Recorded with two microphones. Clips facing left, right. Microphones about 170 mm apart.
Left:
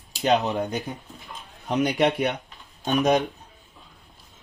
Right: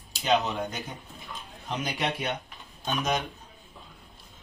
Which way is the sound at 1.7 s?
65° left (ahead or behind).